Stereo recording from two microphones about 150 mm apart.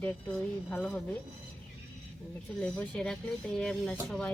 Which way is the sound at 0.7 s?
10° left (ahead or behind).